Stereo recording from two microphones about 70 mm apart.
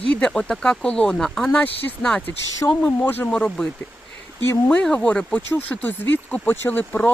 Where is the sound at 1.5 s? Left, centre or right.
Left.